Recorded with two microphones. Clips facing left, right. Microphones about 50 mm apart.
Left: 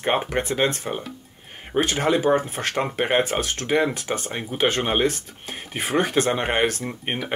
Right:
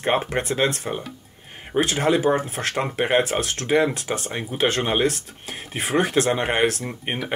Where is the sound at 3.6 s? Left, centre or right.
Centre.